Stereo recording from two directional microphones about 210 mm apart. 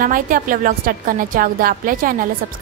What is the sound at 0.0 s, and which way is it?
A woman's voice, 40° right (ahead or behind).